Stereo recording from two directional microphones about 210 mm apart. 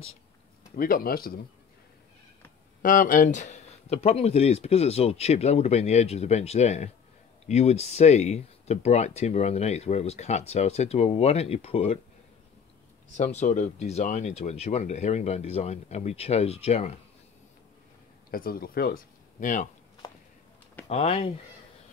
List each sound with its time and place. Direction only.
0.7 s speech: 40° left (ahead or behind)
2.8 s speech: 40° left (ahead or behind)
13.2 s speech: 35° left (ahead or behind)
18.3 s speech: 45° left (ahead or behind)
20.9 s speech: 30° left (ahead or behind)